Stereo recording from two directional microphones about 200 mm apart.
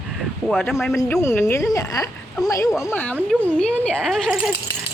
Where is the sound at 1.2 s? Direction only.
15° left (ahead or behind).